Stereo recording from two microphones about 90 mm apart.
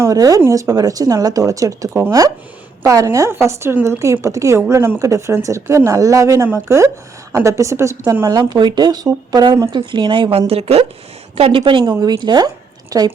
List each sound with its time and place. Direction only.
0.0 s speech: 40° right (ahead or behind)
1.9 s speech: 25° right (ahead or behind)
2.8 s speech: 40° right (ahead or behind)
8.3 s a woman's voice: 55° right (ahead or behind); by 11.9 s 75° right (ahead or behind)
11.9 s speech: 50° right (ahead or behind)
12.9 s speech: 45° right (ahead or behind)